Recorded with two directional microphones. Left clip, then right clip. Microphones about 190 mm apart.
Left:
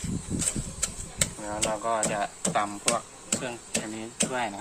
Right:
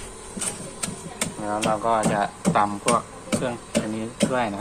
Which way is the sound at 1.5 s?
25° left (ahead or behind).